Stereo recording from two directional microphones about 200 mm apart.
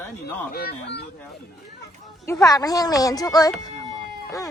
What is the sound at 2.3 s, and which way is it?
Speech, 15° left (ahead or behind).